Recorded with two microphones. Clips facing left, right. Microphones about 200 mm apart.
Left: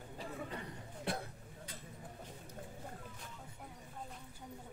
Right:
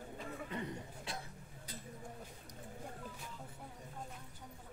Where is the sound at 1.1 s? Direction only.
60° left (ahead or behind).